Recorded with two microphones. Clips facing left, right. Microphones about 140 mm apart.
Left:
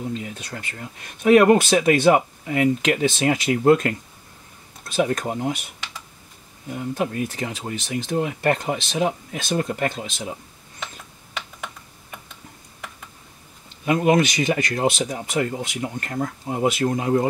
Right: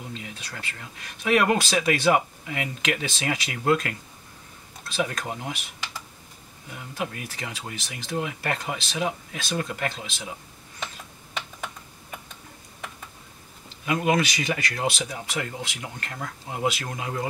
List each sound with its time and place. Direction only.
0.1 s speech: 45° left (ahead or behind)
4.9 s speech: 40° left (ahead or behind)
6.7 s speech: 40° left (ahead or behind)
13.8 s speech: 40° left (ahead or behind)
14.3 s speech: 25° left (ahead or behind)
14.9 s speech: 45° left (ahead or behind)